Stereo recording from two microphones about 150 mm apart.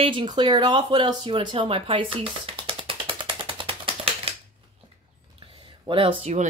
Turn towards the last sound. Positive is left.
turn(degrees=-35)  # may be behind; listen again after turning